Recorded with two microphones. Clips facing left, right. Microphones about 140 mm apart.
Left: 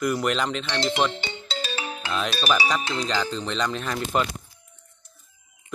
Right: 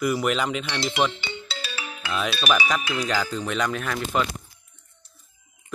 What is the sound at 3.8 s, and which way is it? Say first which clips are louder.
Speech: even; 25° left (ahead or behind).